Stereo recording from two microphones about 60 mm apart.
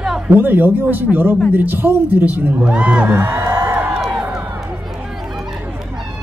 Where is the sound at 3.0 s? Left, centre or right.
Right.